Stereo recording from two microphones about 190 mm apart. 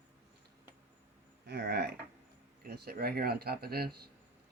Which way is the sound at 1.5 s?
60° right (ahead or behind).